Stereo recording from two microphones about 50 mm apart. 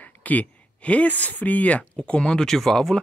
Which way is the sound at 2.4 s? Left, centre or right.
Centre.